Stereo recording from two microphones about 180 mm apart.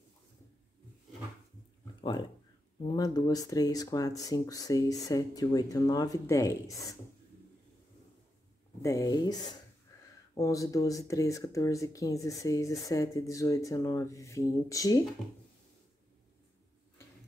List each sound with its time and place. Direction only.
2.0 s a sound: 25° left (ahead or behind)
2.8 s speech: 20° left (ahead or behind)
8.8 s speech: 20° left (ahead or behind)